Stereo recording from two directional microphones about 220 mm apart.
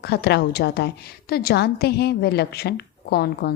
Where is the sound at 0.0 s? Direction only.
45° left (ahead or behind).